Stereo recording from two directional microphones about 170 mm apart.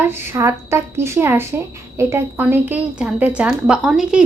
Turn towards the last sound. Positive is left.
turn(degrees=0)  # may be behind; listen again after turning